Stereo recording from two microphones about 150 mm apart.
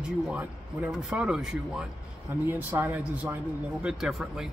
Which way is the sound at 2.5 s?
15° right (ahead or behind).